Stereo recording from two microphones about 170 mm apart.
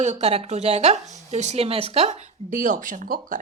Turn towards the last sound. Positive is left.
turn(degrees=-50)  # may be behind; listen again after turning